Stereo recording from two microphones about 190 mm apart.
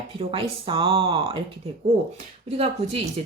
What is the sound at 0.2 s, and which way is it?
Speech, 30° right (ahead or behind).